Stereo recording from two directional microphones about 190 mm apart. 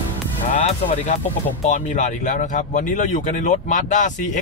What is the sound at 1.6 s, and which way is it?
Speech, 40° left (ahead or behind).